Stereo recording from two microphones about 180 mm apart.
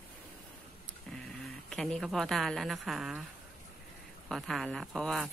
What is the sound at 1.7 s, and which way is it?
Speech, centre (ahead or behind).